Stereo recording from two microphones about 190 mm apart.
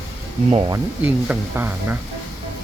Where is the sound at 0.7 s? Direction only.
10° right (ahead or behind).